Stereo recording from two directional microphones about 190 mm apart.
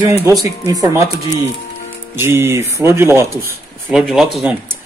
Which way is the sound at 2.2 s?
10° right (ahead or behind).